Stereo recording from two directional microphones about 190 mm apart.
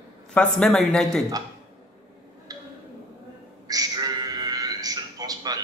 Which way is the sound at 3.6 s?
20° right (ahead or behind).